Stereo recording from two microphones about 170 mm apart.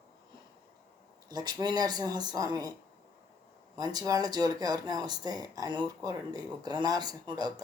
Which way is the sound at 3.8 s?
20° right (ahead or behind).